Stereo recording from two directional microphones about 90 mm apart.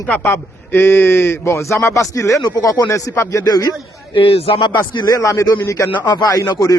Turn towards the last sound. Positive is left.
turn(degrees=40)  # may be behind; listen again after turning